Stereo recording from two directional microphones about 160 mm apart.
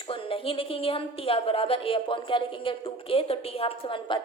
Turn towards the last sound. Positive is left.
turn(degrees=35)  # may be behind; listen again after turning